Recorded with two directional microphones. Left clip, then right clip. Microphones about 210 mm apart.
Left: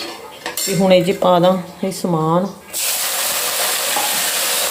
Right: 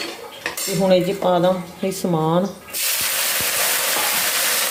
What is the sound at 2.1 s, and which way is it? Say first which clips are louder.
Speech: left 3 dB; centre (ahead or behind).